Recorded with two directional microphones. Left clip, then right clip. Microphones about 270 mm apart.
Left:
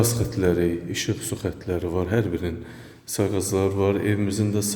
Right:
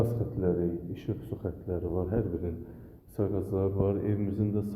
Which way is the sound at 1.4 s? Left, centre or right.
Left.